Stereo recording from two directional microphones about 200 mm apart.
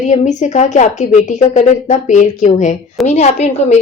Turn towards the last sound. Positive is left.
turn(degrees=30)  # may be behind; listen again after turning